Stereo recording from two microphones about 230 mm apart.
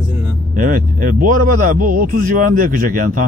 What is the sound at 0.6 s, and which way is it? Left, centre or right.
Speech, right.